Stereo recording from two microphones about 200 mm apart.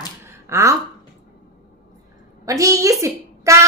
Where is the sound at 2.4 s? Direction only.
15° right (ahead or behind).